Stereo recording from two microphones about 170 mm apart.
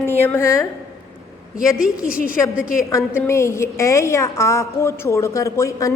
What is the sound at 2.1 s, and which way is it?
Speech, 55° left (ahead or behind).